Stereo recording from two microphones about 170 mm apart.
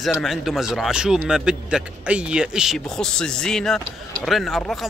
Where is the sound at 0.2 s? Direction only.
Centre (ahead or behind).